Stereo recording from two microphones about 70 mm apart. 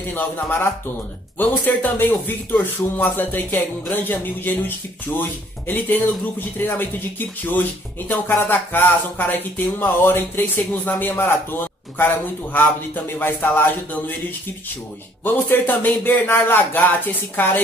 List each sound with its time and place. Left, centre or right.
0.1 s speech: left
15.2 s speech: left